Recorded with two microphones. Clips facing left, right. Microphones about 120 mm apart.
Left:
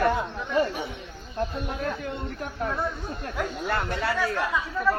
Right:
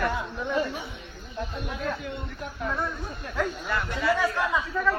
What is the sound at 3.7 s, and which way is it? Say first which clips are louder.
Speech: left 2 dB; 55° left (ahead or behind).